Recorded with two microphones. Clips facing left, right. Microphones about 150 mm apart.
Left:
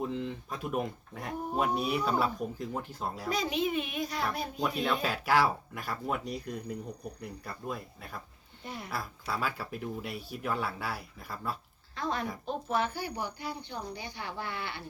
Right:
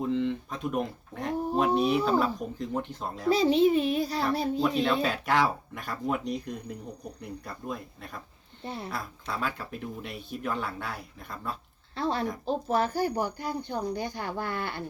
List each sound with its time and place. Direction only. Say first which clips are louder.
0.1 s speech: right 7 dB; 5° left (ahead or behind)
3.2 s speech: right 10 dB; 30° right (ahead or behind)
4.6 s speech: right 2 dB; 5° left (ahead or behind)
8.6 s speech: right 5 dB; 30° right (ahead or behind)
8.9 s speech: right 1 dB; 5° left (ahead or behind)
11.9 s a woman's voice: right 5 dB; 30° right (ahead or behind); by 14.8 s 50° right (ahead or behind)